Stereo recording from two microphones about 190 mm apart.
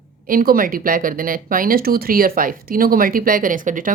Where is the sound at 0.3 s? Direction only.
50° right (ahead or behind).